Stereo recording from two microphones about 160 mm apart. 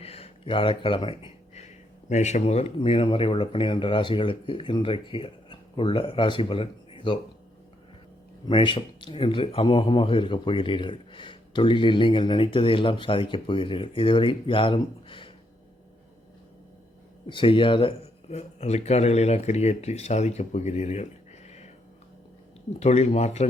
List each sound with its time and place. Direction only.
0.0 s a sound: 40° left (ahead or behind)
2.0 s speech: 50° left (ahead or behind); by 7.2 s 30° left (ahead or behind)
8.4 s speech: 30° left (ahead or behind)
17.2 s speech: 30° left (ahead or behind)
22.8 s speech: 45° left (ahead or behind)